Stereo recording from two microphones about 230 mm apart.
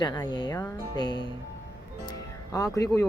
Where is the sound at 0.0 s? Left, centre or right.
Centre.